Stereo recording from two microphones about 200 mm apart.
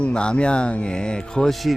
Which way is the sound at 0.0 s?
5° left (ahead or behind).